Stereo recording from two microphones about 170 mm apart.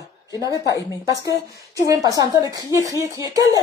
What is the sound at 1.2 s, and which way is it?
Speech, 20° right (ahead or behind).